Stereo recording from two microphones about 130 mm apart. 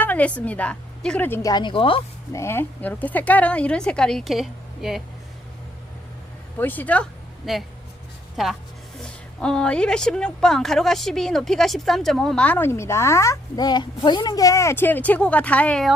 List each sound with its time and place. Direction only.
0.0 s a woman's voice: 10° left (ahead or behind)
1.5 s speech: 35° left (ahead or behind)
2.3 s a woman's voice: 20° left (ahead or behind); by 5.0 s centre (ahead or behind)
6.6 s a woman's voice: 15° left (ahead or behind)
7.5 s a woman's voice: centre (ahead or behind)